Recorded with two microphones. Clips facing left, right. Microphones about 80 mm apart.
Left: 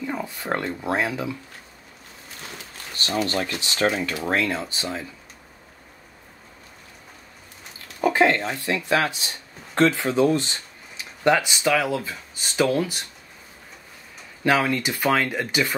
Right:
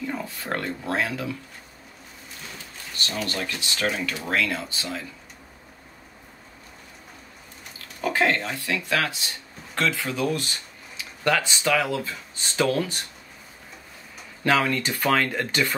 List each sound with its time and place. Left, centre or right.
0.0 s a sound: centre
0.3 s speech: left
3.0 s speech: left
8.0 s speech: left; by 13.0 s centre
14.4 s speech: centre